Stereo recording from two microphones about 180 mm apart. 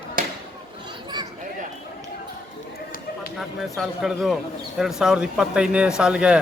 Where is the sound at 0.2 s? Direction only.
50° right (ahead or behind).